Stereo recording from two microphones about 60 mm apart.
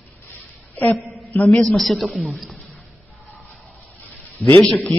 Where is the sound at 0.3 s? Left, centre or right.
Left.